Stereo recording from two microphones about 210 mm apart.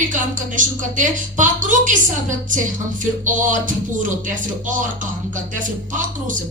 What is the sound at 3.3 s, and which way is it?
Speech, 40° right (ahead or behind).